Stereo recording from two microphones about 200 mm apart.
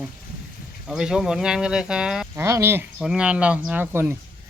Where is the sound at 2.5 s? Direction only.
15° right (ahead or behind).